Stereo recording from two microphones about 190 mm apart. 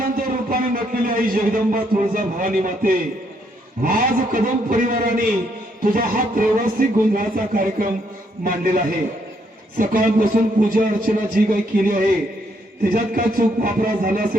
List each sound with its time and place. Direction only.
0.0 s a man's voice: 50° right (ahead or behind)